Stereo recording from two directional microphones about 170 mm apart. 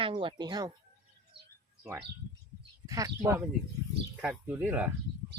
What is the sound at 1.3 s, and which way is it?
Bird, 30° right (ahead or behind).